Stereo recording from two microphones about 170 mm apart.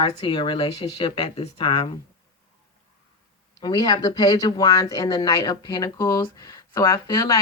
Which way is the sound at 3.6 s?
25° left (ahead or behind).